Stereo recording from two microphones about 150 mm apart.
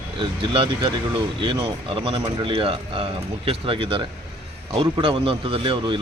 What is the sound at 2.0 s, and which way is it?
A man's voice, 35° right (ahead or behind).